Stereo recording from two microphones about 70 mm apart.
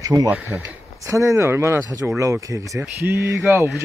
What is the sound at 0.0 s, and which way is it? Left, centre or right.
Speech, right.